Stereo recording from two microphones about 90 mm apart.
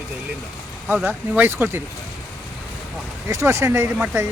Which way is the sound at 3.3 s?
35° right (ahead or behind).